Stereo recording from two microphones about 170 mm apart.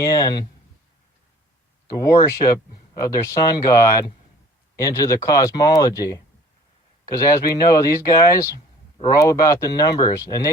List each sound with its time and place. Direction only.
0.0 s speech: 20° left (ahead or behind)
1.9 s speech: 20° left (ahead or behind)